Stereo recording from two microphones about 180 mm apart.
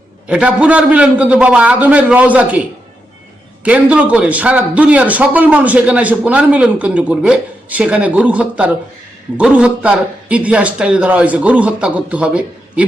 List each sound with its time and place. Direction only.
0.3 s a man's voice: 5° right (ahead or behind)
3.6 s a man's voice: 5° right (ahead or behind)